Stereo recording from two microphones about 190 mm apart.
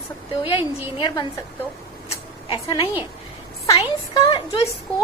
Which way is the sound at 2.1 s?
25° left (ahead or behind).